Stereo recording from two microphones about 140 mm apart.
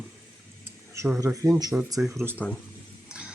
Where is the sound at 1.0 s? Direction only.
20° right (ahead or behind).